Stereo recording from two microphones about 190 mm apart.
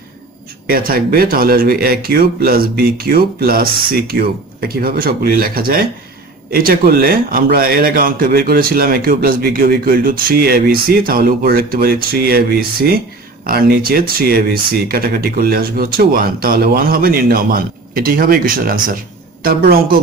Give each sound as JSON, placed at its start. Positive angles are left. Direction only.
{"t": 0.7, "sound": "a man's voice", "side_deg": -50}